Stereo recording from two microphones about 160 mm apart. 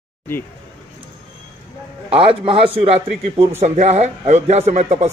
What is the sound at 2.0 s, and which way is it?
A man's voice, 35° right (ahead or behind).